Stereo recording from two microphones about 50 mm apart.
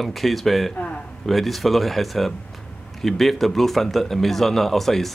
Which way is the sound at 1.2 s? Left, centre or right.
Centre.